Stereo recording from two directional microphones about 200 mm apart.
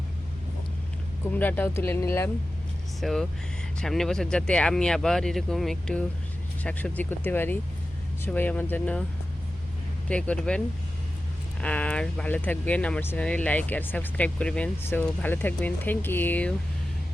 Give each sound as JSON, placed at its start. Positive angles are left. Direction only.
{"t": 1.2, "sound": "speech", "side_deg": 10}
{"t": 3.0, "sound": "speech", "side_deg": 0}
{"t": 10.1, "sound": "speech", "side_deg": 5}
{"t": 11.6, "sound": "speech", "side_deg": 5}